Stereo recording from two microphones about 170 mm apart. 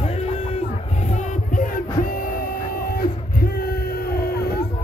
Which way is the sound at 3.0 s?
60° left (ahead or behind).